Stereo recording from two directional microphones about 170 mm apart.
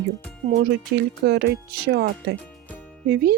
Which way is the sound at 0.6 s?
70° right (ahead or behind).